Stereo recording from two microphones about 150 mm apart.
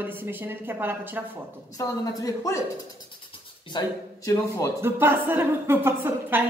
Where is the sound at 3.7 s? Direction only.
30° left (ahead or behind).